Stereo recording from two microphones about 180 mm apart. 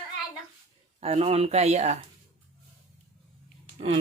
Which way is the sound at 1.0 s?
35° right (ahead or behind).